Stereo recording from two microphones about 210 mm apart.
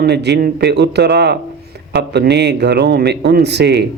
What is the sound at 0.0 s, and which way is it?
A man's voice, 50° right (ahead or behind).